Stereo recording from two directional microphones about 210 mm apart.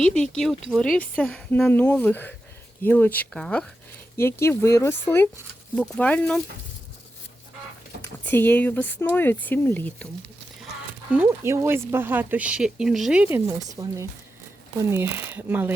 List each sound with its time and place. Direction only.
0.0 s speech: 5° left (ahead or behind)
8.3 s speech: 10° left (ahead or behind)
11.1 s speech: 10° right (ahead or behind)
13.7 s speech: 15° right (ahead or behind)